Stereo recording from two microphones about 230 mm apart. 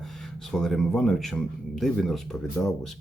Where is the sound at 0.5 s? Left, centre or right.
Centre.